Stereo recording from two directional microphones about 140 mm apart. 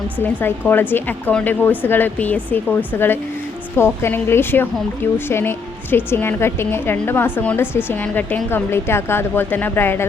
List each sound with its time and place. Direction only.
0.2 s a woman's voice: 15° left (ahead or behind)